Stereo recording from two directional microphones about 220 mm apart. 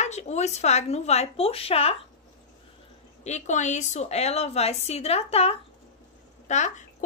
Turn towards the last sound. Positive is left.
turn(degrees=35)  # may be behind; listen again after turning